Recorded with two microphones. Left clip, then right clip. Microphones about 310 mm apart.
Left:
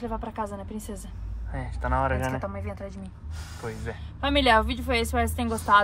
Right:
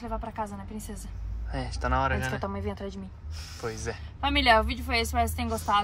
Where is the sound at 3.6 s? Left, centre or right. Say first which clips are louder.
Right 1 dB; centre.